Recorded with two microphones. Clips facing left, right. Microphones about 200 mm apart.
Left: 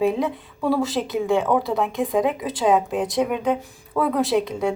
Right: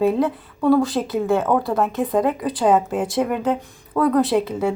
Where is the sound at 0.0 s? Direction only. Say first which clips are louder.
Right 3 dB; centre (ahead or behind).